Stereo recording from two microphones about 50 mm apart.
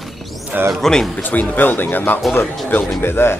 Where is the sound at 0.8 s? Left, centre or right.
Centre.